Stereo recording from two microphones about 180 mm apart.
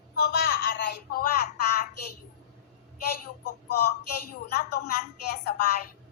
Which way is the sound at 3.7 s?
60° left (ahead or behind).